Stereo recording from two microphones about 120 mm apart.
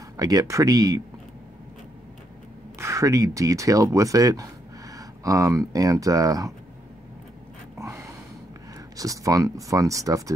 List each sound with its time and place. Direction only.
0.2 s speech: 30° right (ahead or behind)
2.8 s speech: 25° right (ahead or behind)
7.7 s a sound: 25° right (ahead or behind)
8.9 s speech: 30° right (ahead or behind)